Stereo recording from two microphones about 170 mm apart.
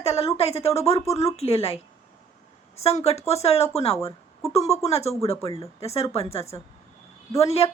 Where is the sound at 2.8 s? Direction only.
40° left (ahead or behind).